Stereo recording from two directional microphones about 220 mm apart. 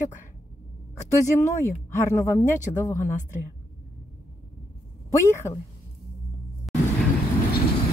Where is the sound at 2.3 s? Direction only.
10° left (ahead or behind).